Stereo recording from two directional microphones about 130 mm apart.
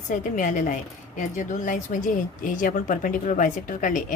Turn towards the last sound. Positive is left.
turn(degrees=90)